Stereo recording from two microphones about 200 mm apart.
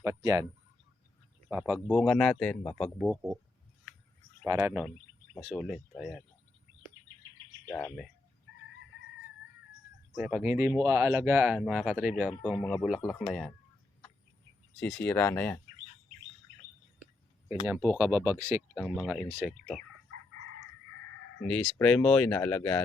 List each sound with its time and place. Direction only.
0.0 s speech: 15° right (ahead or behind)
1.5 s speech: 5° right (ahead or behind)
3.0 s speech: 5° right (ahead or behind)
4.4 s speech: 15° right (ahead or behind)
7.6 s speech: 5° left (ahead or behind)
10.2 s speech: 5° right (ahead or behind)
14.8 s speech: 5° left (ahead or behind)
17.8 s speech: 10° right (ahead or behind)
18.7 s speech: centre (ahead or behind)
21.4 s speech: 5° left (ahead or behind)